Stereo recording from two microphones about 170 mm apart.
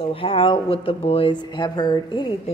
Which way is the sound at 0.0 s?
30° left (ahead or behind).